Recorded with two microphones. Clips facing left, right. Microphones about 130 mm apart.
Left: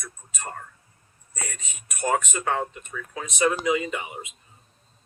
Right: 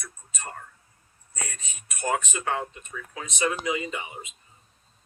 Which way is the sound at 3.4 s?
25° left (ahead or behind).